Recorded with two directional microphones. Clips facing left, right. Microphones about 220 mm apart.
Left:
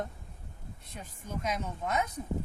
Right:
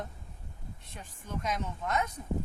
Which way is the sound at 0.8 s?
40° left (ahead or behind).